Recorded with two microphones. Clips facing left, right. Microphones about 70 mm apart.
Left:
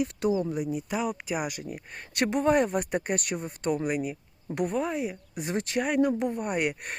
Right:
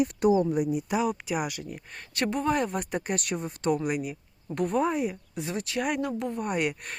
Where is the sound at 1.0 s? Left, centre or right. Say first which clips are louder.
Right 2 dB; centre.